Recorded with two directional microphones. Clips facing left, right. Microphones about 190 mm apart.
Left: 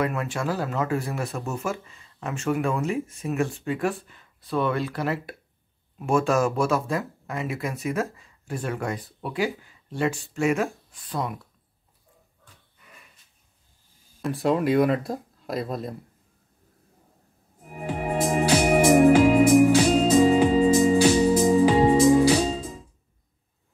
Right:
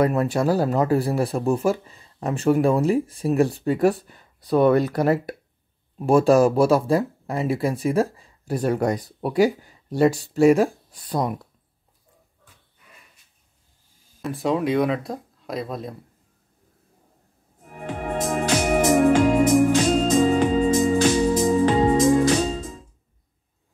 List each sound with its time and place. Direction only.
0.0 s speech: 35° right (ahead or behind)
14.2 s speech: centre (ahead or behind)
17.6 s music: 5° left (ahead or behind)